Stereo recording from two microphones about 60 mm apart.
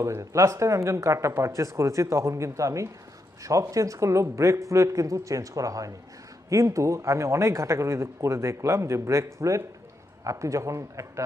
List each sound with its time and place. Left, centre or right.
0.2 s speech: right
6.5 s speech: right